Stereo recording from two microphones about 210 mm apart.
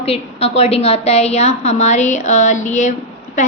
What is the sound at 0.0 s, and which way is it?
A woman's voice, 30° left (ahead or behind).